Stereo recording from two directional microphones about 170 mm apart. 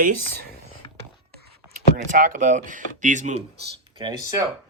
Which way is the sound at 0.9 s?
70° right (ahead or behind).